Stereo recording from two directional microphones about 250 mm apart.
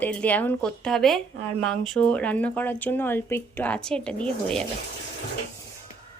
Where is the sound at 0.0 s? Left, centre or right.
Centre.